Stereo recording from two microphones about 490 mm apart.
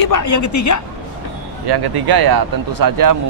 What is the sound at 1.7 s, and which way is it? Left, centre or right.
Speech, right.